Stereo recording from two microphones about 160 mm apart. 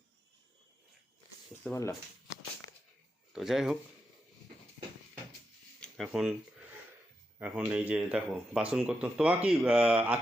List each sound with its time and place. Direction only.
1.7 s speech: 20° left (ahead or behind)
3.3 s speech: 5° right (ahead or behind)
5.8 s speech: centre (ahead or behind)
7.3 s speech: 10° right (ahead or behind)